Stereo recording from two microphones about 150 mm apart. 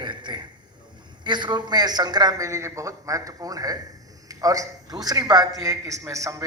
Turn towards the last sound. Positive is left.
turn(degrees=-20)  # may be behind; listen again after turning